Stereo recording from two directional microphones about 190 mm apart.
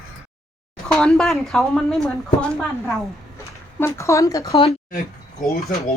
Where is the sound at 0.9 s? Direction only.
5° left (ahead or behind).